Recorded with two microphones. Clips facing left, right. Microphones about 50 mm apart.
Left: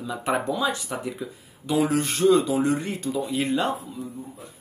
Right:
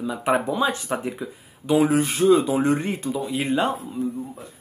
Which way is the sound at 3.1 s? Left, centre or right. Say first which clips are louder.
Left 2 dB; centre.